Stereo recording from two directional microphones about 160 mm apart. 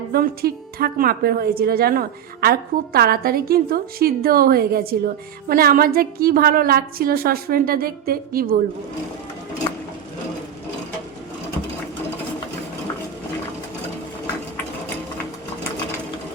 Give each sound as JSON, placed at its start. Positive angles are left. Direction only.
{"t": 0.1, "sound": "a woman's voice", "side_deg": -75}